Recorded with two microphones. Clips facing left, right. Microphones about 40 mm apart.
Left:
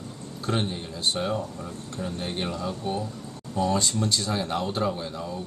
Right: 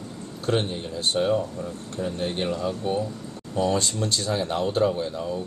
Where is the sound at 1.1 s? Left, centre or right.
Centre.